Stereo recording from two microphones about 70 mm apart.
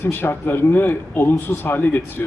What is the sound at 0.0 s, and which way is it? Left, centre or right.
A man's voice, left.